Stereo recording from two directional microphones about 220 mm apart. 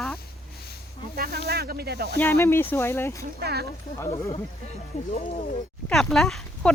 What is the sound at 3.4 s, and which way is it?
Speech, 45° right (ahead or behind).